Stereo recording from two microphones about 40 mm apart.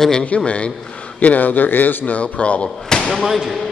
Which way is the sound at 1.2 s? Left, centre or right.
Left.